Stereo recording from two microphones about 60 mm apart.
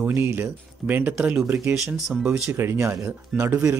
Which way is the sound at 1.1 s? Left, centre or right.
Centre.